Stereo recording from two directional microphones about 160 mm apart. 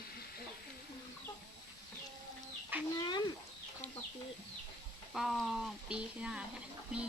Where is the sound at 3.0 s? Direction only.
25° left (ahead or behind).